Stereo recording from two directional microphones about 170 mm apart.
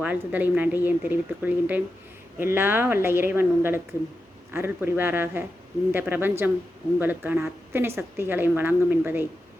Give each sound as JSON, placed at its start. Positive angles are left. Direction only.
{"t": 0.0, "sound": "a woman's voice", "side_deg": -10}